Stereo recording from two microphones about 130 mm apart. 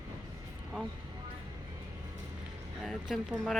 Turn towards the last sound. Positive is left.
turn(degrees=0)  # may be behind; listen again after turning